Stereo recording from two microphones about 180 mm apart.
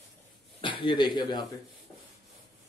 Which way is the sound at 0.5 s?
30° left (ahead or behind).